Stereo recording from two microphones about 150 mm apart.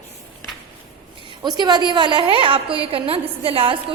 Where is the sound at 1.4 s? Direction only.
30° right (ahead or behind).